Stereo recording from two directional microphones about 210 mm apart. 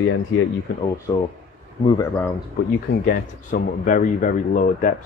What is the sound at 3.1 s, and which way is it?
Speech, 40° left (ahead or behind).